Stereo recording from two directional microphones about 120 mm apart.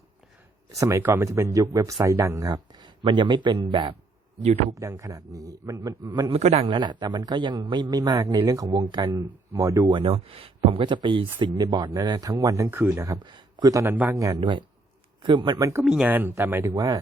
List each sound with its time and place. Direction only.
0.7 s speech: 25° right (ahead or behind); by 3.9 s 40° right (ahead or behind)
4.8 s speech: 25° right (ahead or behind)
6.3 s a man's voice: 55° right (ahead or behind); by 9.9 s 25° right (ahead or behind)
9.9 s a man's voice: 50° right (ahead or behind); by 13.1 s 20° right (ahead or behind)
13.1 s speech: 40° right (ahead or behind)
13.8 s speech: 15° right (ahead or behind)
14.2 s a man's voice: 30° right (ahead or behind)
15.8 s speech: 5° right (ahead or behind)
16.0 s speech: 15° right (ahead or behind)
16.7 s a man's voice: 30° right (ahead or behind)